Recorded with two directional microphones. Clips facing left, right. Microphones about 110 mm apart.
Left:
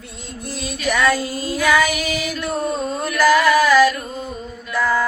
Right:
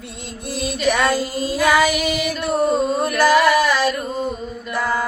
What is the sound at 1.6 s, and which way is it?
Female singing, 20° right (ahead or behind).